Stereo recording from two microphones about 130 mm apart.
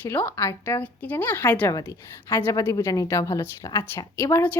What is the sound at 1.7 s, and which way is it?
A woman's voice, 25° left (ahead or behind).